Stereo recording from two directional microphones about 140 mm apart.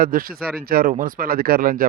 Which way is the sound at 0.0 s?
90° right.